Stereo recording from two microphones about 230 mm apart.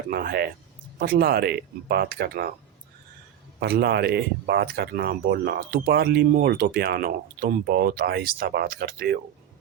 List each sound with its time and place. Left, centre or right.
0.1 s speech: right
3.6 s speech: right